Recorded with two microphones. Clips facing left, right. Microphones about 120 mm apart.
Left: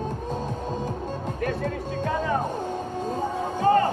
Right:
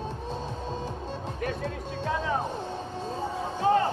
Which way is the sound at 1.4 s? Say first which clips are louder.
Left 5 dB; 45° left (ahead or behind).